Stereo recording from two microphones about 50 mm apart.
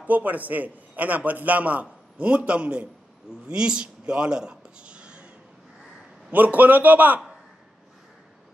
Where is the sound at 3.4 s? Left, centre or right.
Centre.